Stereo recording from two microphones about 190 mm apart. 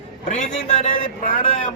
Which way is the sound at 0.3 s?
35° left (ahead or behind).